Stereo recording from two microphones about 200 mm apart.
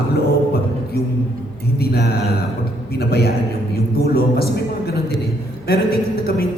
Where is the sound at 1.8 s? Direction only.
50° left (ahead or behind).